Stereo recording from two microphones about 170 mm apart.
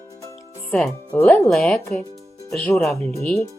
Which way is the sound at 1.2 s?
15° left (ahead or behind).